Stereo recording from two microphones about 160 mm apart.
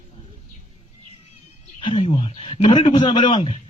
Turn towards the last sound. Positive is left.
turn(degrees=35)  # may be behind; listen again after turning